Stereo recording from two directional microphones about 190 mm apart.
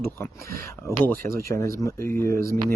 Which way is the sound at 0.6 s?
15° left (ahead or behind).